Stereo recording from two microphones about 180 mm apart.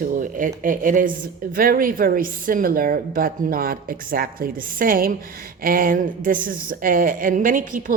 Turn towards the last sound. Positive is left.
turn(degrees=-45)  # may be behind; listen again after turning